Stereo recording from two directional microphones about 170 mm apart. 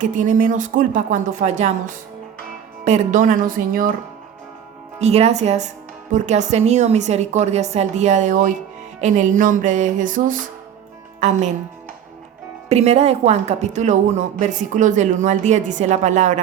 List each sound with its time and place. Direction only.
0.0 s a woman's voice: 50° right (ahead or behind)
2.8 s a woman's voice: 45° right (ahead or behind)
4.9 s a woman's voice: 40° right (ahead or behind)
12.6 s a woman's voice: 40° right (ahead or behind)